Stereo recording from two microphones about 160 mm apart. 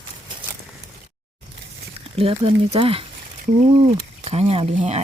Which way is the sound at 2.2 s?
35° right (ahead or behind).